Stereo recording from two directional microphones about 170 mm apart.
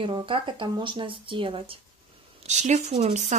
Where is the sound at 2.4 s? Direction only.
45° right (ahead or behind).